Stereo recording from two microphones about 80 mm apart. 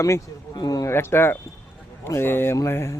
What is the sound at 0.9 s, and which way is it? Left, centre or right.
A man's voice, left.